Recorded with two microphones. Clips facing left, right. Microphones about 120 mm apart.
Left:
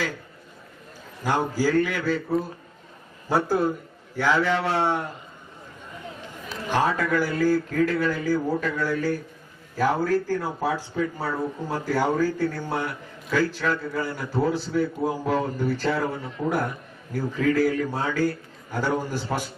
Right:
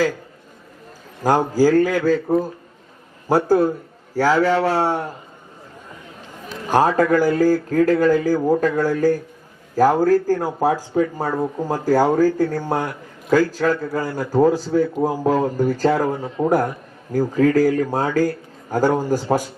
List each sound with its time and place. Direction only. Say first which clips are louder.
1.2 s speech: right 8 dB; 40° right (ahead or behind)
6.7 s speech: right 7 dB; 40° right (ahead or behind)